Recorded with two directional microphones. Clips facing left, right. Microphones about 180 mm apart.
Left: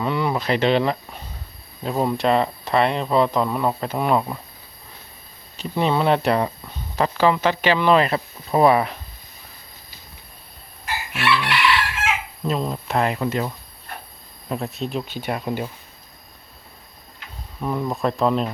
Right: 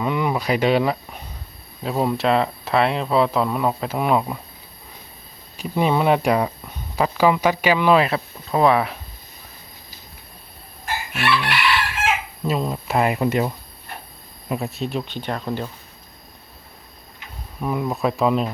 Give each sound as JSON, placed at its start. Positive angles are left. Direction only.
{"t": 0.0, "sound": "speech", "side_deg": -10}
{"t": 5.5, "sound": "speech", "side_deg": -10}
{"t": 8.4, "sound": "speech", "side_deg": 5}
{"t": 10.8, "sound": "chicken", "side_deg": -45}
{"t": 12.5, "sound": "speech", "side_deg": -5}
{"t": 14.5, "sound": "speech", "side_deg": -5}
{"t": 17.6, "sound": "speech", "side_deg": -5}